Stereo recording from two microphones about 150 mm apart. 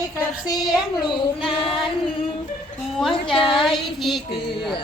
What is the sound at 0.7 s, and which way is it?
Speech, 30° left (ahead or behind).